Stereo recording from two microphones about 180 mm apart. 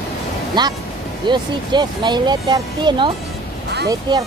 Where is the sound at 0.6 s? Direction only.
25° right (ahead or behind).